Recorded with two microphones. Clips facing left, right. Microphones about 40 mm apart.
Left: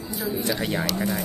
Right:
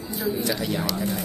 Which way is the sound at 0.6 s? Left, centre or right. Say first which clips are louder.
Left 1 dB; left.